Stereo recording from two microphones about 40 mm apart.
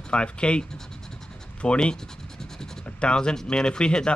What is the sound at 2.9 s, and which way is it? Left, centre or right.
Speech, left.